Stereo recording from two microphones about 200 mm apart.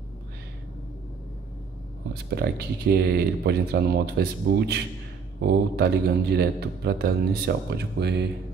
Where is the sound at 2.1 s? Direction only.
50° right (ahead or behind).